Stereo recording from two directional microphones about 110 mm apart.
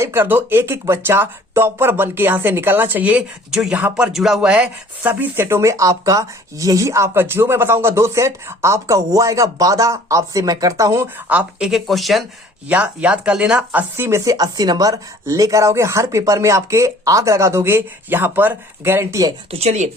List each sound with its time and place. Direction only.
0.0 s speech: 20° right (ahead or behind)
11.3 s speech: 10° right (ahead or behind)
12.6 s speech: 10° right (ahead or behind)
13.9 s speech: 25° right (ahead or behind)
14.3 s speech: 35° right (ahead or behind)
19.5 s speech: 75° right (ahead or behind)